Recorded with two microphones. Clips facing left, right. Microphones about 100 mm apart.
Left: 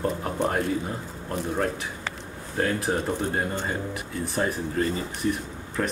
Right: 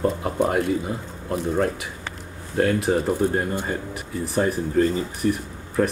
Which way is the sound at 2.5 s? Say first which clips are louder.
Right 5 dB; centre (ahead or behind).